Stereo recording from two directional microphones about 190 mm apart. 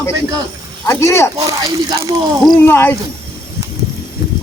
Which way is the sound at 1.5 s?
15° right (ahead or behind).